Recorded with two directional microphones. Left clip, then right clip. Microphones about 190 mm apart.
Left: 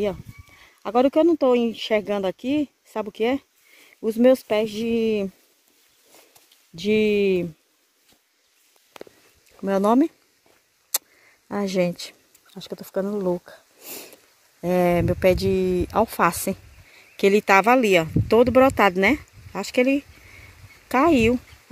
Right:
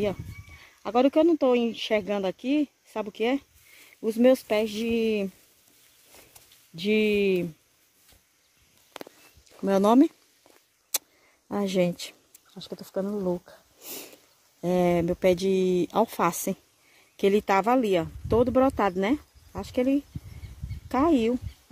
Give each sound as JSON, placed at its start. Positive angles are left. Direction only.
{"t": 0.0, "sound": "speech", "side_deg": 5}
{"t": 6.7, "sound": "speech", "side_deg": 10}
{"t": 9.6, "sound": "speech", "side_deg": -10}
{"t": 12.1, "sound": "speech", "side_deg": 15}
{"t": 13.9, "sound": "a sound", "side_deg": -10}
{"t": 15.5, "sound": "speech", "side_deg": -15}